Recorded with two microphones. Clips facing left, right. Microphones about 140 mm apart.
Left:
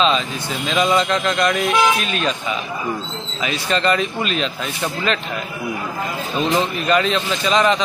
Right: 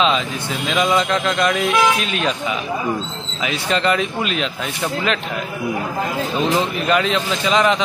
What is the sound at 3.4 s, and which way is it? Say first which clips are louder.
A man's voice: even; 15° right (ahead or behind).